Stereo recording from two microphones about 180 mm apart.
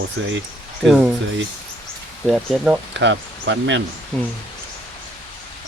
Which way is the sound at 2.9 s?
85° right.